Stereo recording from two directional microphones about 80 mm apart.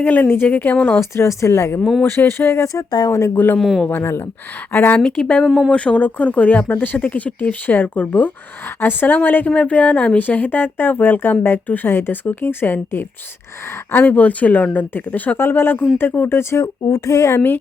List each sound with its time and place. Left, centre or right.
0.0 s speech: left
0.9 s speech: left
3.3 s speech: left
3.6 s speech: centre
3.8 s speech: left
4.9 s speech: centre
5.5 s speech: centre
5.7 s speech: centre; by 17.4 s left